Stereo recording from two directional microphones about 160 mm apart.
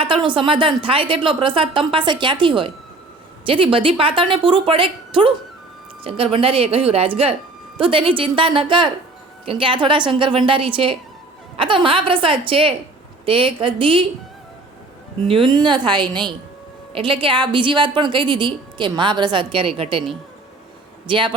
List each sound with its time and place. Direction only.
0.0 s a woman's voice: 30° right (ahead or behind)
15.3 s a woman's voice: 30° right (ahead or behind)
21.1 s a woman's voice: 30° right (ahead or behind)